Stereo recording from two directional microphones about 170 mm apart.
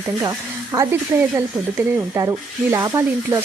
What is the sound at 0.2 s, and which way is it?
Speech, 20° right (ahead or behind).